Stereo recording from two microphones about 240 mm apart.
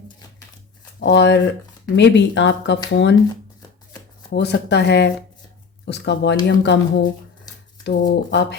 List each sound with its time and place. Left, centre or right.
0.9 s speech: left
4.3 s speech: left